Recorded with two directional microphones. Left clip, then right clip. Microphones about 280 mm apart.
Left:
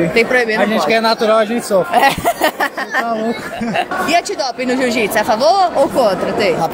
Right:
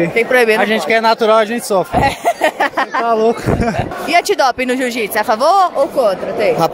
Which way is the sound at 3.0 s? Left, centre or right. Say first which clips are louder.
Right 6 dB; right.